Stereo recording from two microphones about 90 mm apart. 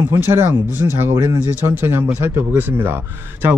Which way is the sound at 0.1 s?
25° right (ahead or behind).